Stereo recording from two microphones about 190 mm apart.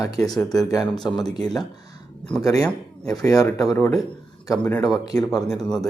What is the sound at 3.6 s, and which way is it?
Speech, 15° left (ahead or behind).